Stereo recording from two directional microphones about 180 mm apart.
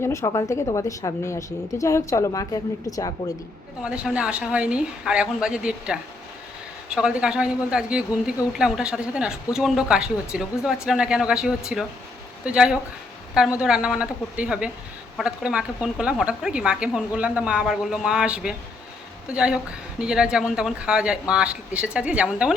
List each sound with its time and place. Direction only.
0.0 s a woman's voice: 15° left (ahead or behind)
3.8 s a woman's voice: 5° right (ahead or behind)